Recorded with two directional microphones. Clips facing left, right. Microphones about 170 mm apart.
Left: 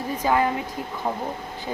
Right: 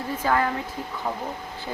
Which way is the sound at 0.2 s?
15° left (ahead or behind).